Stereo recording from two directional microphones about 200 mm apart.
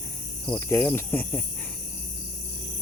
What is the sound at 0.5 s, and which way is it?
Speech, 10° left (ahead or behind).